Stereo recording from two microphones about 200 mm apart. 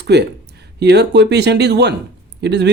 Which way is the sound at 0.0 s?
55° right (ahead or behind).